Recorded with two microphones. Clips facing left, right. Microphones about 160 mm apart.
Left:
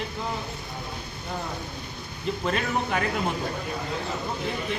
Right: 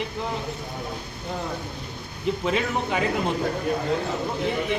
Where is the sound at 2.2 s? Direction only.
15° right (ahead or behind).